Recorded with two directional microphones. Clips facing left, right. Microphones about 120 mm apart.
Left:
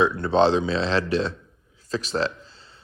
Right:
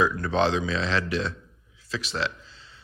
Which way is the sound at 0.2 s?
30° left (ahead or behind).